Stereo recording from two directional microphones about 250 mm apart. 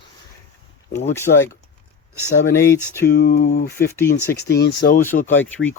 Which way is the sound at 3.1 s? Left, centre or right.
Left.